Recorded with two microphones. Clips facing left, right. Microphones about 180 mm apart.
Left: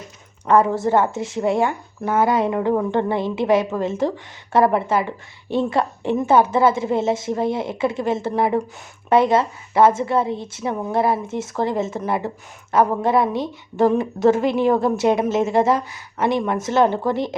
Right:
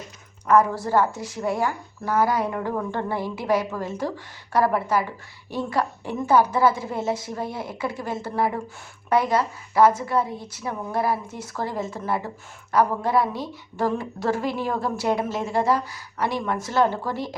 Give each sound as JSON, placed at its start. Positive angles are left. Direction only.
{"t": 0.4, "sound": "a woman's voice", "side_deg": 25}